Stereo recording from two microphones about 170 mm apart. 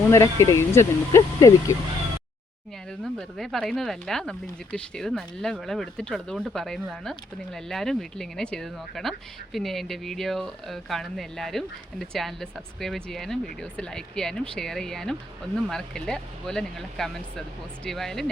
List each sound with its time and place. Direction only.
0.1 s speech: 15° left (ahead or behind)
3.0 s speech: centre (ahead or behind)